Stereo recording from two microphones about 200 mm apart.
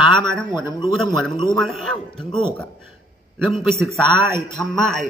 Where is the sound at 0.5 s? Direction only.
20° left (ahead or behind).